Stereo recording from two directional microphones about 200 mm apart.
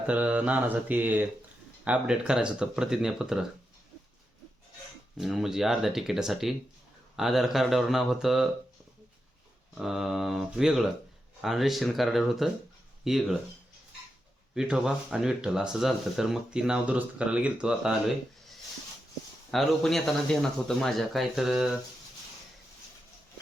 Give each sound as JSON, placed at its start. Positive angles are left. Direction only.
{"t": 0.1, "sound": "mantra", "side_deg": -5}
{"t": 1.8, "sound": "speech", "side_deg": -5}
{"t": 5.1, "sound": "speech", "side_deg": 0}
{"t": 9.7, "sound": "speech", "side_deg": 0}
{"t": 14.5, "sound": "speech", "side_deg": -5}
{"t": 19.5, "sound": "speech", "side_deg": 0}